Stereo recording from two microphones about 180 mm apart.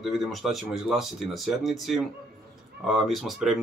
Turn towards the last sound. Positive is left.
turn(degrees=0)  # may be behind; listen again after turning